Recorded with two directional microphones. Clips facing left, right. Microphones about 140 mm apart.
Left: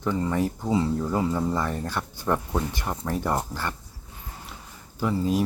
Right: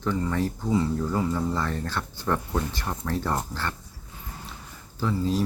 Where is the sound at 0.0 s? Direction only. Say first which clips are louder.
Left 1 dB; 15° left (ahead or behind).